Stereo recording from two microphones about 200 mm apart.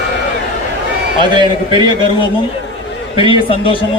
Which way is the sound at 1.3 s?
25° right (ahead or behind).